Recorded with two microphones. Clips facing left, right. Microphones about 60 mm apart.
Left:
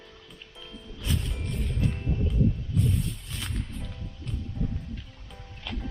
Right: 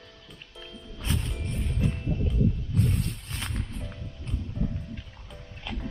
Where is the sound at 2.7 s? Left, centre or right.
Right.